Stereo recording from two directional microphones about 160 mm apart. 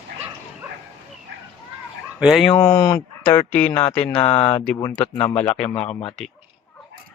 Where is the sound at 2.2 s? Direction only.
Centre (ahead or behind).